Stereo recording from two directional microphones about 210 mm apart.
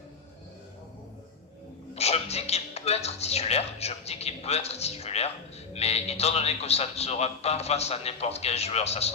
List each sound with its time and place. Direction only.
2.0 s a man's voice: 30° left (ahead or behind)